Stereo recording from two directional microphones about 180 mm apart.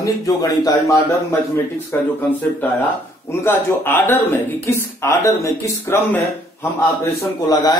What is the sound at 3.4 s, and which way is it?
Speech, 15° left (ahead or behind).